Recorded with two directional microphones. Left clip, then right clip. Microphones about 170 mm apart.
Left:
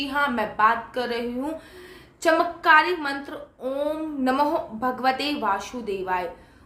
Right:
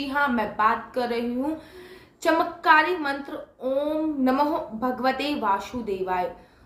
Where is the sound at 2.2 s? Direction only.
15° left (ahead or behind).